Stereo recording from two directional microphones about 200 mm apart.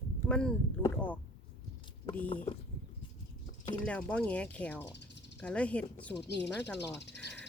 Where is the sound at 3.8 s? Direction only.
5° left (ahead or behind).